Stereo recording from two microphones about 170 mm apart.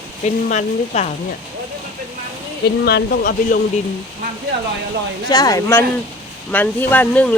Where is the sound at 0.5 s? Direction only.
45° left (ahead or behind).